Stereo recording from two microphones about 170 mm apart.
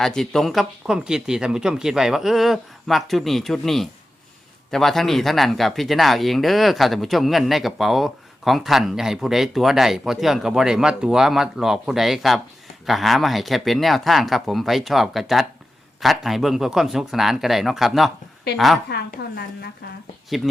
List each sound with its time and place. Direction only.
0.0 s speech: centre (ahead or behind)
18.9 s a woman's voice: 70° left (ahead or behind)
20.3 s speech: centre (ahead or behind)